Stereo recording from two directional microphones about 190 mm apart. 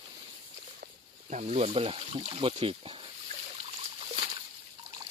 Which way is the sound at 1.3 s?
35° right (ahead or behind).